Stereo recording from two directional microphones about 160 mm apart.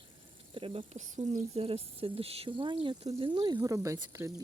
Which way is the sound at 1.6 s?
35° right (ahead or behind).